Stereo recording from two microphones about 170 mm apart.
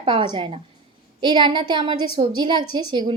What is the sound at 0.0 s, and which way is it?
A woman's voice, 30° right (ahead or behind).